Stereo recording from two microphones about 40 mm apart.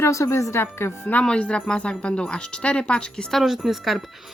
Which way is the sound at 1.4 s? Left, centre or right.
Left.